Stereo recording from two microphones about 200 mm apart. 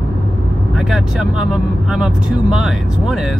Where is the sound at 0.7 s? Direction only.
Centre (ahead or behind).